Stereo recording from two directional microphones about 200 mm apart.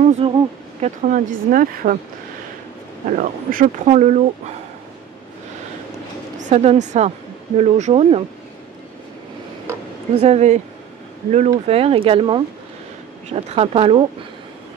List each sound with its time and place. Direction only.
0.2 s speech: 30° right (ahead or behind)
3.1 s speech: 40° right (ahead or behind)
6.5 s speech: 35° right (ahead or behind)
10.2 s speech: 35° right (ahead or behind)